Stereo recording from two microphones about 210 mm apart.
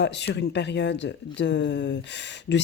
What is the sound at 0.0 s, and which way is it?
Speech, 55° left (ahead or behind).